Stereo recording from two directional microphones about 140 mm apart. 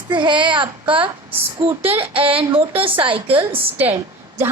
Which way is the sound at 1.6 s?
15° right (ahead or behind).